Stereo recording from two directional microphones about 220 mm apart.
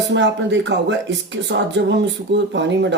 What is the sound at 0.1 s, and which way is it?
Speech, 55° right (ahead or behind).